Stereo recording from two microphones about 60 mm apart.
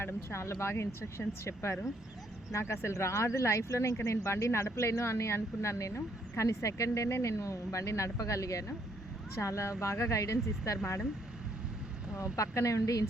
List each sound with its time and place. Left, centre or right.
0.0 s speech: left
12.1 s speech: left